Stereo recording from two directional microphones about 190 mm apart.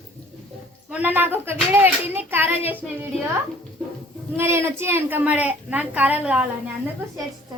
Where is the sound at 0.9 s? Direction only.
10° right (ahead or behind).